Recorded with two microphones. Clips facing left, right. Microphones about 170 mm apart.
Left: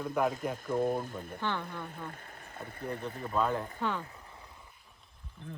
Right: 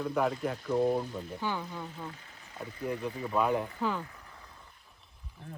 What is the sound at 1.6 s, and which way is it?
Speech, 55° left (ahead or behind).